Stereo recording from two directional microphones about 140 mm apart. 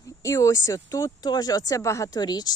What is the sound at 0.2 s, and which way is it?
Speech, 20° left (ahead or behind).